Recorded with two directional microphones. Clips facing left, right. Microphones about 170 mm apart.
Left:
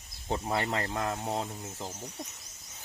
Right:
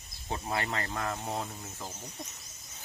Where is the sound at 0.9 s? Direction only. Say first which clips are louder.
Left 2 dB; 15° left (ahead or behind).